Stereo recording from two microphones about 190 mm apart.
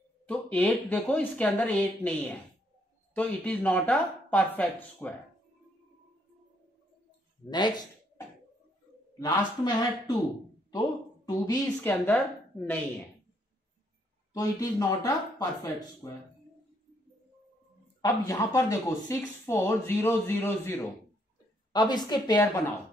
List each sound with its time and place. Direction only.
0.3 s speech: 5° left (ahead or behind)
7.4 s speech: 20° left (ahead or behind)
9.2 s a woman's voice: 20° left (ahead or behind)
14.3 s speech: 20° left (ahead or behind)
18.0 s speech: 15° left (ahead or behind)